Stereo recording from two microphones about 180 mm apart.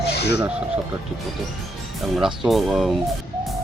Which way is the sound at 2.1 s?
Centre (ahead or behind).